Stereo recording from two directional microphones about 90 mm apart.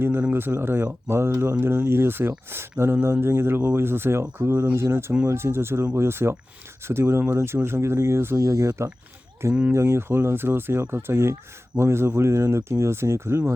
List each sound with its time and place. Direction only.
0.0 s speech: 25° right (ahead or behind)